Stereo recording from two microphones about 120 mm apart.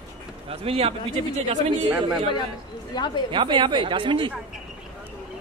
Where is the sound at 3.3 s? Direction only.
40° right (ahead or behind).